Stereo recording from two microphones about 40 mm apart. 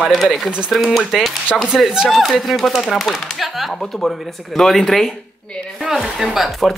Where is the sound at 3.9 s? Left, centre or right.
Centre.